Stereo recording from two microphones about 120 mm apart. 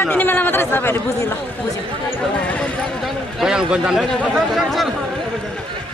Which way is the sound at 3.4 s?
5° right (ahead or behind).